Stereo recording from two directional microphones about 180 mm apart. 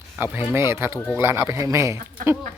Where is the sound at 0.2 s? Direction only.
10° right (ahead or behind).